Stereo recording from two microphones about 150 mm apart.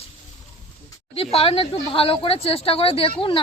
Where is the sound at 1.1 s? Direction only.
40° left (ahead or behind).